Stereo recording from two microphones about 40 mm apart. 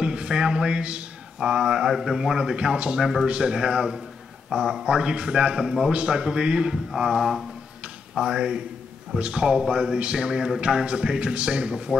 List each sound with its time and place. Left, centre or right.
0.0 s a sound: right
1.4 s a man's voice: centre
3.0 s a man's voice: centre
3.3 s a man's voice: right
6.9 s a man's voice: centre
8.2 s a man's voice: right
9.9 s a man's voice: right